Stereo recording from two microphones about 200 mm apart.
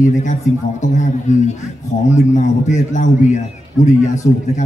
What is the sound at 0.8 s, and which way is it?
Speech, 35° left (ahead or behind).